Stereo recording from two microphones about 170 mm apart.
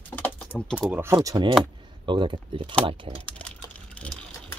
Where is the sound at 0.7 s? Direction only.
10° right (ahead or behind); by 3.0 s 25° right (ahead or behind).